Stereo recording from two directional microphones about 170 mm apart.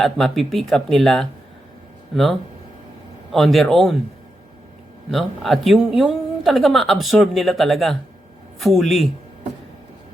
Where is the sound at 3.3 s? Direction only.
Centre (ahead or behind).